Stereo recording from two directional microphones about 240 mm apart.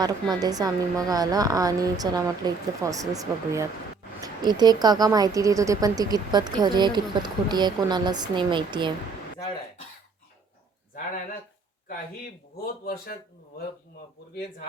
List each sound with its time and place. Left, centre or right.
0.0 s a woman's voice: centre
10.9 s speech: left